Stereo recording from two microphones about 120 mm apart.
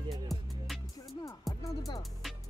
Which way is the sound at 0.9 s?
30° left (ahead or behind).